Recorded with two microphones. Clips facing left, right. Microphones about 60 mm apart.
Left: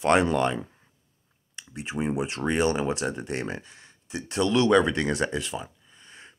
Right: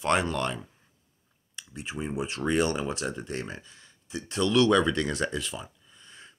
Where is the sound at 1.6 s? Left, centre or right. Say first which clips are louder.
Left 5 dB; left.